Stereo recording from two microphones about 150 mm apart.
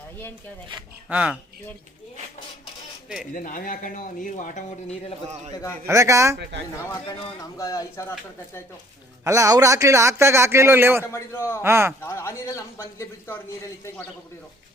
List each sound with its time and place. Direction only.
1.1 s speech: 10° right (ahead or behind)
3.3 s speech: 65° left (ahead or behind); by 5.1 s 50° left (ahead or behind)
5.8 s a man's voice: 20° right (ahead or behind)
7.6 s a man's voice: 20° left (ahead or behind)
9.2 s a man's voice: 20° right (ahead or behind)
11.0 s a man's voice: 15° left (ahead or behind)
11.6 s speech: 15° right (ahead or behind)
12.0 s a man's voice: 20° left (ahead or behind)